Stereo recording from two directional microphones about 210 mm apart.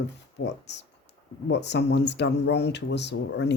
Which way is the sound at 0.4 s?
55° left (ahead or behind).